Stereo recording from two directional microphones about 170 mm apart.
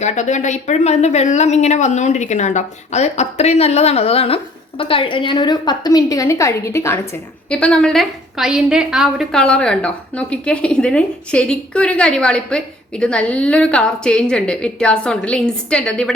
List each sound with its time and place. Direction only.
0.0 s a woman's voice: 45° left (ahead or behind); by 16.1 s 5° left (ahead or behind)